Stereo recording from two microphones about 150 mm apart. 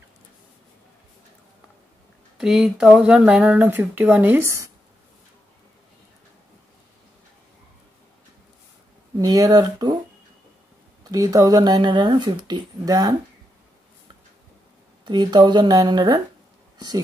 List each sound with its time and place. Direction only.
2.3 s speech: 5° right (ahead or behind)
9.2 s speech: 25° right (ahead or behind)
11.1 s speech: 25° right (ahead or behind)
15.0 s speech: 30° right (ahead or behind)